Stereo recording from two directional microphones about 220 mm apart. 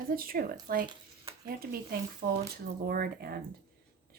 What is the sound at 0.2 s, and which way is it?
Speech, 40° right (ahead or behind).